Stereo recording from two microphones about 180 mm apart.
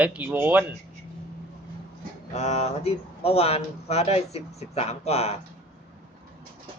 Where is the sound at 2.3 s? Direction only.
40° left (ahead or behind).